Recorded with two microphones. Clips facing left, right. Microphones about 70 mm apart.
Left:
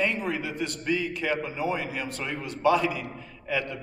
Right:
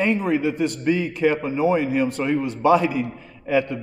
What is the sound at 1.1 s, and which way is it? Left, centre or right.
Speech, right.